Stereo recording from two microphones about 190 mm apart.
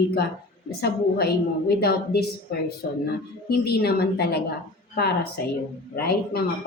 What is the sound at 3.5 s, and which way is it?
A woman's voice, 55° left (ahead or behind).